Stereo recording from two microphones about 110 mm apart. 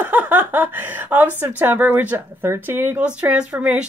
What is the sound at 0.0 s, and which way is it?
Speech, 15° right (ahead or behind).